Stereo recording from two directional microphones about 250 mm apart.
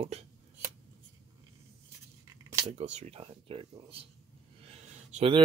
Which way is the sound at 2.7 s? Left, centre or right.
Right.